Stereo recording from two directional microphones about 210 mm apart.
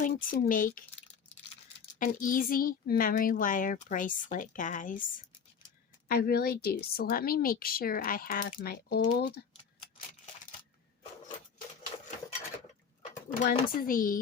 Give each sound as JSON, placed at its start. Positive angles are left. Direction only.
{"t": 0.0, "sound": "a woman's voice", "side_deg": 40}
{"t": 2.0, "sound": "a woman's voice", "side_deg": 40}
{"t": 13.5, "sound": "a woman's voice", "side_deg": 45}